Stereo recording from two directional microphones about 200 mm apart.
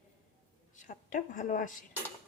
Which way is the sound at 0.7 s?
40° left (ahead or behind).